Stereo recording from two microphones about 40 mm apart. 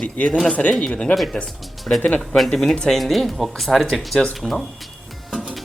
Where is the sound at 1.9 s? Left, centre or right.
Left.